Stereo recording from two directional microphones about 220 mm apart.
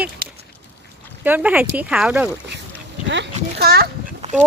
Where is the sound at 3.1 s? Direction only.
50° right (ahead or behind).